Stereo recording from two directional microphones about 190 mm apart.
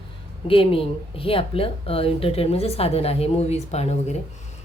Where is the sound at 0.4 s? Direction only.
30° left (ahead or behind).